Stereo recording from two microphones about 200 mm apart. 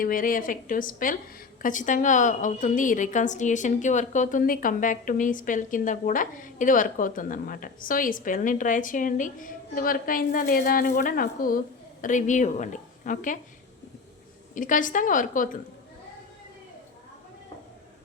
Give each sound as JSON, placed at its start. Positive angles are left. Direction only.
{"t": 0.0, "sound": "a woman's voice", "side_deg": 45}
{"t": 14.5, "sound": "a woman's voice", "side_deg": 40}